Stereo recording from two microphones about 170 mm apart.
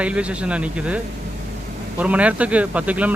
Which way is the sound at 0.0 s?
5° right (ahead or behind).